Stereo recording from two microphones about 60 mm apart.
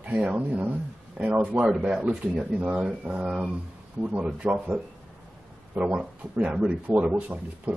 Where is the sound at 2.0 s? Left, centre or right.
Right.